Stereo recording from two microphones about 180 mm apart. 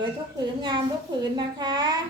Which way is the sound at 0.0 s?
25° right (ahead or behind).